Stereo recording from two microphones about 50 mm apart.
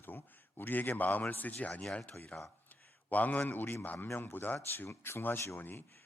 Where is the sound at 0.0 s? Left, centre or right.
Left.